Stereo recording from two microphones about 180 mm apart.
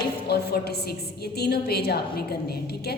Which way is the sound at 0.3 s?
60° left (ahead or behind).